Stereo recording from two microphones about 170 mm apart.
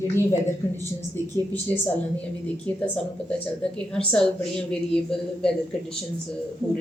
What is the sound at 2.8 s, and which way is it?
A woman's voice, 5° left (ahead or behind).